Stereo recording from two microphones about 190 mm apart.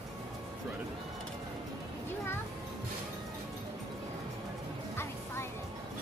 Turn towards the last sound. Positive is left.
turn(degrees=15)  # may be behind; listen again after turning